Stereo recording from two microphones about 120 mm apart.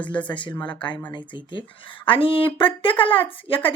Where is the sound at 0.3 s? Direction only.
45° left (ahead or behind).